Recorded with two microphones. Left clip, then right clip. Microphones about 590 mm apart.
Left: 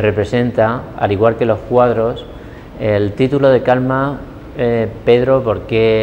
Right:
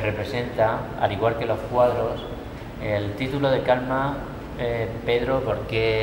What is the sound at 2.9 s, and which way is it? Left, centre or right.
Speech, left.